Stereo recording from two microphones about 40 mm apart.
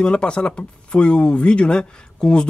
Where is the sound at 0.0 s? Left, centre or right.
Left.